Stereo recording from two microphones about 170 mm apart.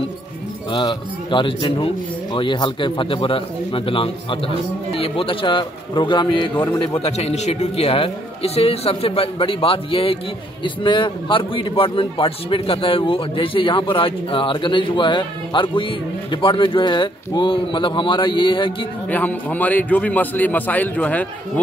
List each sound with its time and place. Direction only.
0.7 s a man's voice: 30° left (ahead or behind)
6.5 s a man's voice: 10° left (ahead or behind)
7.0 s a man's voice: 40° left (ahead or behind)
19.0 s a man's voice: 10° left (ahead or behind)